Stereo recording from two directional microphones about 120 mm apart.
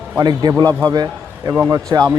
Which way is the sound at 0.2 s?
35° right (ahead or behind).